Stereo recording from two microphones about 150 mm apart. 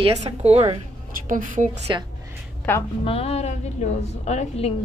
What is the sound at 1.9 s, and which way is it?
Speech, 30° right (ahead or behind).